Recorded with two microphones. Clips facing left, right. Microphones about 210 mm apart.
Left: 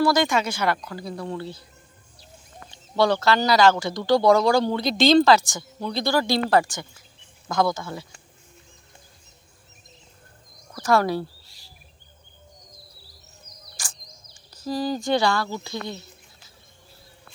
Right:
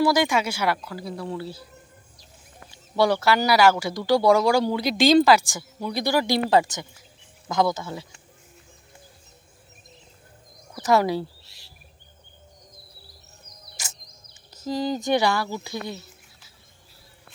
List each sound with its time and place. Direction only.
0.0 s speech: 15° right (ahead or behind)
2.6 s speech: 10° right (ahead or behind)
10.8 s speech: 20° right (ahead or behind)
13.7 s a sound: 20° right (ahead or behind)
14.5 s speech: 20° right (ahead or behind)